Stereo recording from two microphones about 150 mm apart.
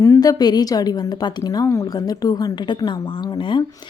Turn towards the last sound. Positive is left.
turn(degrees=25)  # may be behind; listen again after turning